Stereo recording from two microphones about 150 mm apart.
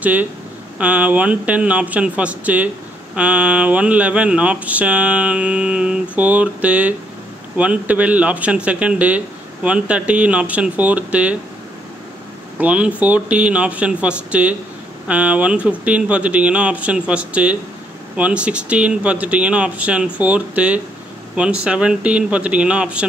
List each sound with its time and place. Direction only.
0.0 s speech: 10° right (ahead or behind)
12.5 s speech: 10° right (ahead or behind)